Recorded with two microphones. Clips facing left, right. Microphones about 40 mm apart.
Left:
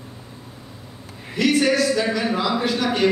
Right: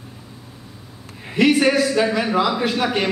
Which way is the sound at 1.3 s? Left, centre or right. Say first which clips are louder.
Right 3 dB; right.